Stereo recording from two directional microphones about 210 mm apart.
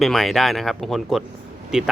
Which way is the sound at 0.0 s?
Centre (ahead or behind).